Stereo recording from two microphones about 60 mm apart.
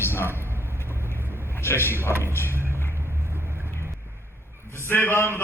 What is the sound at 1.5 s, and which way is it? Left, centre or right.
Speech, left.